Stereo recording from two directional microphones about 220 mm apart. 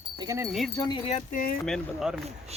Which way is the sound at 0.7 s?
20° left (ahead or behind).